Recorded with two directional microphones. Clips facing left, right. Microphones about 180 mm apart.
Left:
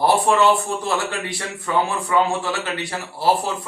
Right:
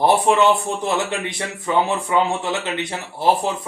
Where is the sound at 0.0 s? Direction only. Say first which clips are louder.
Right 1 dB; 20° right (ahead or behind).